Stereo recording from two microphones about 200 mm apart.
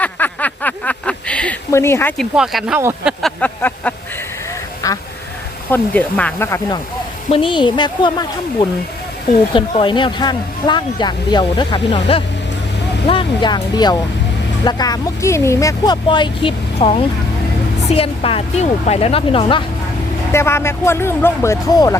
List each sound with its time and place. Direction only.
0.0 s a sound: 10° left (ahead or behind)
2.3 s speech: centre (ahead or behind)
4.8 s duck: 15° left (ahead or behind)
5.7 s speech: 10° left (ahead or behind)
7.3 s speech: 25° left (ahead or behind)
9.5 s speech: 25° left (ahead or behind)
20.3 s speech: 15° left (ahead or behind)